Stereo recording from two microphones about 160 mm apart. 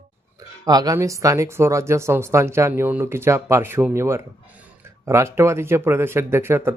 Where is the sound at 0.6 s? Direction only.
25° right (ahead or behind).